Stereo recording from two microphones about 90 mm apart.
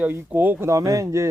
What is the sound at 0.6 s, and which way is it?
Speech, 40° right (ahead or behind).